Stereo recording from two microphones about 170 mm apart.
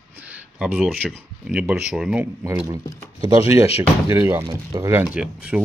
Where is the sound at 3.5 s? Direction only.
35° left (ahead or behind).